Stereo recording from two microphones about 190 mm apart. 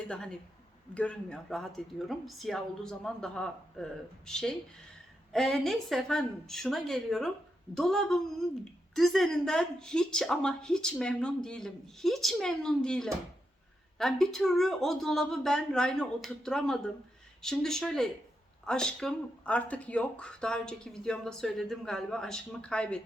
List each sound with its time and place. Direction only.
0.0 s speech: 5° left (ahead or behind)